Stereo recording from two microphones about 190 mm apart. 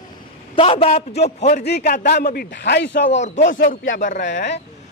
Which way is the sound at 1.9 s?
45° left (ahead or behind).